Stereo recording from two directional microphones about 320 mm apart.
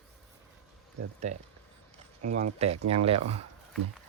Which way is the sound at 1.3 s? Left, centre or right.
Right.